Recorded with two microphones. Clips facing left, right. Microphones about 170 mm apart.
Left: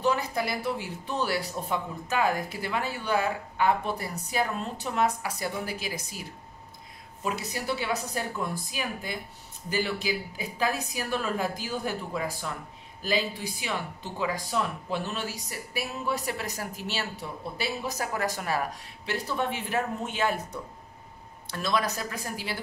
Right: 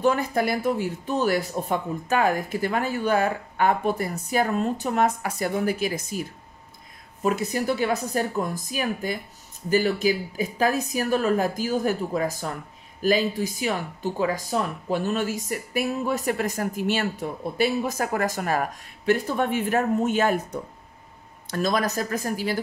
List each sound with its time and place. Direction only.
0.0 s speech: 50° right (ahead or behind)
7.2 s speech: 50° right (ahead or behind)